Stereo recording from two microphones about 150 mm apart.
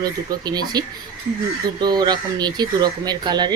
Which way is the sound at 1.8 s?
30° right (ahead or behind).